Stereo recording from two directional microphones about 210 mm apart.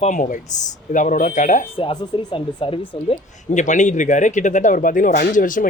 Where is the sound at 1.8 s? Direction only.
25° left (ahead or behind).